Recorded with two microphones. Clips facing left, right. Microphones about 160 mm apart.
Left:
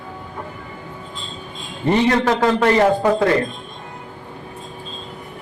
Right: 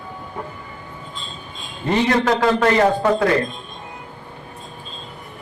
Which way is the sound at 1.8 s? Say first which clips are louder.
Left 2 dB; 25° left (ahead or behind).